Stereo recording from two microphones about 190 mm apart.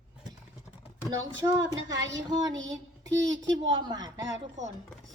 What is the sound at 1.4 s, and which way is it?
Speech, 20° right (ahead or behind).